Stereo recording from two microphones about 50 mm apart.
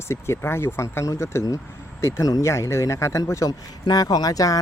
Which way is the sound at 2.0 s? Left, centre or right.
Left.